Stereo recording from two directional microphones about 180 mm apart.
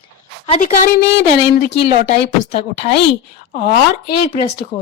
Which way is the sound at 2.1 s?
70° left (ahead or behind).